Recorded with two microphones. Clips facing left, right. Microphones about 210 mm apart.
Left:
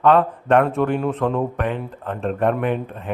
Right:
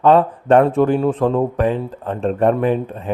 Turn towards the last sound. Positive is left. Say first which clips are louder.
# right 5 dB
turn(degrees=-35)  # may be behind; listen again after turning